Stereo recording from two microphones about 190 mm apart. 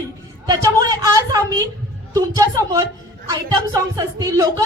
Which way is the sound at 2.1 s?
20° right (ahead or behind).